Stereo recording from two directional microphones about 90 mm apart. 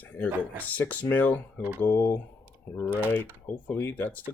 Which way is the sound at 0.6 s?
15° left (ahead or behind).